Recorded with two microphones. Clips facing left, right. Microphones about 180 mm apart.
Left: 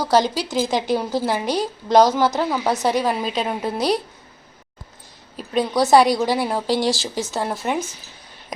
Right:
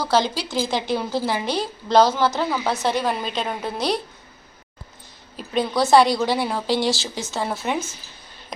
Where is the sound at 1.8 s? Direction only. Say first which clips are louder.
Left 2 dB; 15° left (ahead or behind).